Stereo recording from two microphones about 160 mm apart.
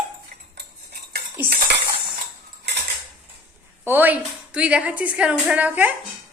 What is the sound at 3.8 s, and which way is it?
A woman's voice, 10° right (ahead or behind).